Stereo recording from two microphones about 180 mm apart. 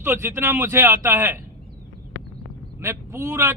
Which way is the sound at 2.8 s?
15° right (ahead or behind).